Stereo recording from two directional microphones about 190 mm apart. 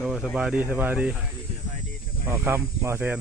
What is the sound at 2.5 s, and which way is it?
Speech, 15° right (ahead or behind).